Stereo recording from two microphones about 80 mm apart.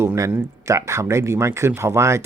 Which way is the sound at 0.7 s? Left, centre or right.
Right.